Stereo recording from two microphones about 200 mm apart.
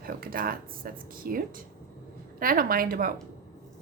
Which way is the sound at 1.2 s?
45° right (ahead or behind).